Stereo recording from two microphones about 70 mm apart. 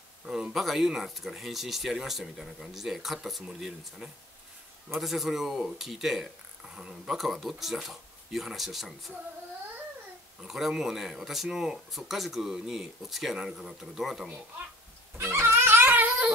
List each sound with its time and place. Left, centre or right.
0.3 s speech: centre
10.4 s speech: centre
15.4 s dog: right